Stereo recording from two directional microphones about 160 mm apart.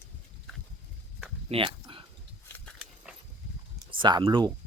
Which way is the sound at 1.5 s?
35° right (ahead or behind).